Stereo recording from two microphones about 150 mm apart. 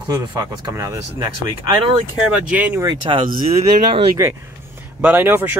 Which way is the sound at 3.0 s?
35° right (ahead or behind).